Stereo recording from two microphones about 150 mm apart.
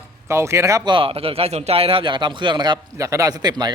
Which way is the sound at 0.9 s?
35° right (ahead or behind).